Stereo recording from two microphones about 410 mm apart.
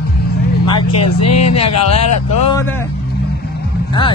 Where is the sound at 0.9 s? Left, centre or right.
Left.